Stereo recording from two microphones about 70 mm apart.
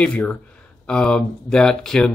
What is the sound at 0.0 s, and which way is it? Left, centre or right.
Speech, centre.